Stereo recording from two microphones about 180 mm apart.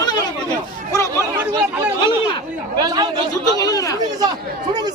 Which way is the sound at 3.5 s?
20° left (ahead or behind).